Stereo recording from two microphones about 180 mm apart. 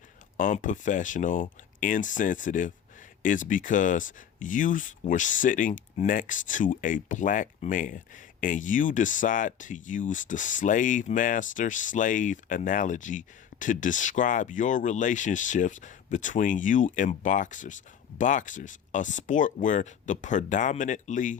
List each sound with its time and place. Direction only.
0.3 s speech: 45° left (ahead or behind)